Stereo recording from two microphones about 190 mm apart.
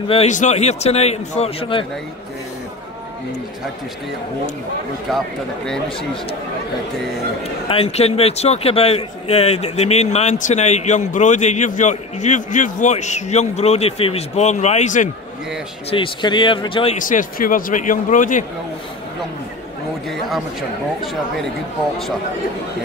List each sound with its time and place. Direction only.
0.1 s a man's voice: 35° left (ahead or behind)
5.1 s speech: centre (ahead or behind)
7.6 s a man's voice: 30° left (ahead or behind)
15.9 s speech: 25° left (ahead or behind)
16.9 s a man's voice: 45° left (ahead or behind)
20.1 s speech: centre (ahead or behind)